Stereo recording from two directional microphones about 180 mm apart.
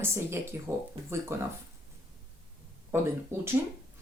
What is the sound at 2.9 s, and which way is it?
Speech, 15° right (ahead or behind).